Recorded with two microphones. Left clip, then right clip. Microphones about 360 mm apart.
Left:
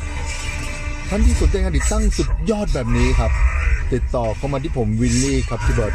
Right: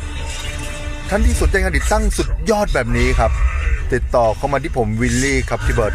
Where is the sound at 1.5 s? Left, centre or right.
Right.